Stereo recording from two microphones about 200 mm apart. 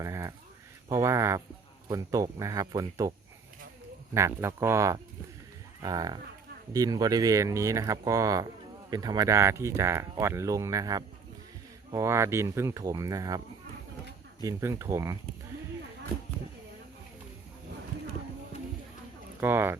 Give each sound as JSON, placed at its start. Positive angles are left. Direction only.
{"t": 0.0, "sound": "a sound", "side_deg": -15}
{"t": 0.9, "sound": "speech", "side_deg": -15}
{"t": 14.4, "sound": "speech", "side_deg": -15}
{"t": 19.4, "sound": "speech", "side_deg": -10}